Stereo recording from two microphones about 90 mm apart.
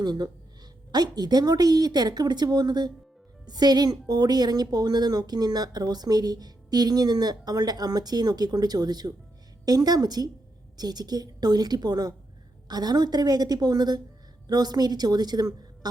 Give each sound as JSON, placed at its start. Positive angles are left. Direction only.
{"t": 0.0, "sound": "speech", "side_deg": -50}